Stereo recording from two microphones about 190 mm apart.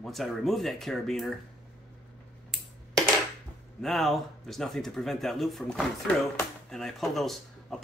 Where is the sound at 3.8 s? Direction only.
Centre (ahead or behind).